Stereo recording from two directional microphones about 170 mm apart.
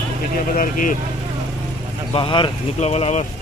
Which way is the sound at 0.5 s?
50° left (ahead or behind).